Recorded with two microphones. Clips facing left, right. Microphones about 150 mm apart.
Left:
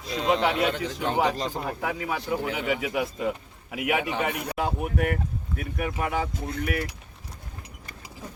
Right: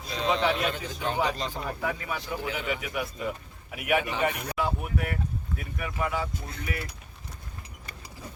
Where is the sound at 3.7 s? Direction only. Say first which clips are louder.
Even; 90° left.